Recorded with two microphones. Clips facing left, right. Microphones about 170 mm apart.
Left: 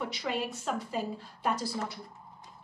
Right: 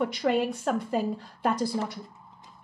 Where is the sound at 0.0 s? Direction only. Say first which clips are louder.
Right 8 dB; 55° right (ahead or behind).